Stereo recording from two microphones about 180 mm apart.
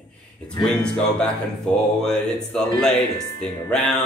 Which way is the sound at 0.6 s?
5° left (ahead or behind).